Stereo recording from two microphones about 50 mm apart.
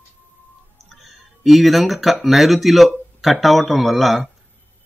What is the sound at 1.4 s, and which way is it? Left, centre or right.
Speech, centre.